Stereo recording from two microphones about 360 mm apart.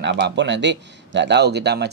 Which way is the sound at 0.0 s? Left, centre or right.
Right.